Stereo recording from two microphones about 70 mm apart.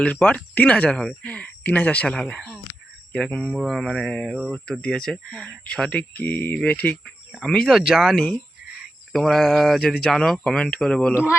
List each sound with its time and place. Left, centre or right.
0.0 s speech: centre
2.1 s speech: centre
3.4 s mantra: centre
3.8 s speech: centre
6.1 s speech: left
6.9 s speech: centre
7.7 s mantra: centre
9.1 s mantra: centre
10.0 s speech: centre
10.4 s mantra: centre
10.7 s speech: centre